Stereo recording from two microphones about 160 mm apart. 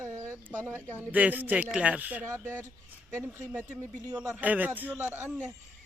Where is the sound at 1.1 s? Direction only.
10° right (ahead or behind).